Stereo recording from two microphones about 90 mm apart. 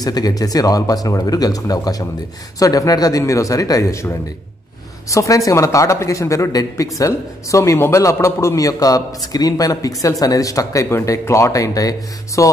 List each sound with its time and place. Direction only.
0.0 s a man's voice: 45° left (ahead or behind)
5.1 s a man's voice: 35° left (ahead or behind)